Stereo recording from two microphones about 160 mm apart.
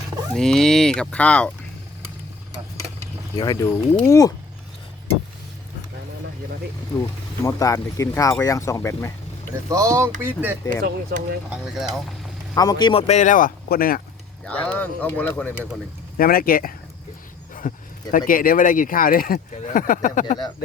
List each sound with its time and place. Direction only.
0.3 s cattle: 5° left (ahead or behind)
3.3 s speech: 25° left (ahead or behind)
7.4 s speech: 20° left (ahead or behind)
9.6 s speech: 20° right (ahead or behind)
10.7 s speech: 65° right (ahead or behind)
11.4 s cattle: centre (ahead or behind)
12.5 s speech: 25° left (ahead or behind); by 14.0 s 65° left (ahead or behind)
14.4 s speech: 10° left (ahead or behind)
16.1 s speech: 65° left (ahead or behind)
17.5 s a sound: 55° left (ahead or behind)
18.3 s speech: 60° left (ahead or behind)